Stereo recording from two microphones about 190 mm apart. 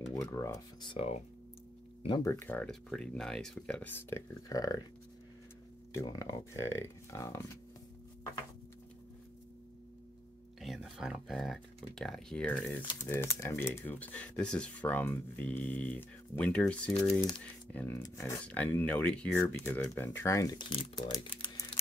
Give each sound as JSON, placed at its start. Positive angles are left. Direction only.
{"t": 0.1, "sound": "speech", "side_deg": 15}
{"t": 2.0, "sound": "speech", "side_deg": 20}
{"t": 5.9, "sound": "speech", "side_deg": 15}
{"t": 10.6, "sound": "speech", "side_deg": 0}